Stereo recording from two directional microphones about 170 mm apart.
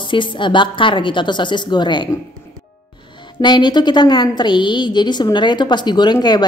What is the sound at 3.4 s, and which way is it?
A woman's voice, 25° left (ahead or behind).